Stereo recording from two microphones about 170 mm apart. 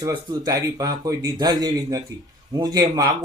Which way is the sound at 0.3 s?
20° right (ahead or behind).